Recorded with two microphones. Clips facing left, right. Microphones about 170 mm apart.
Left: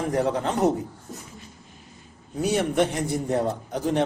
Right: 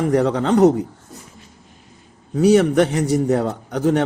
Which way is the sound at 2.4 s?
85° right.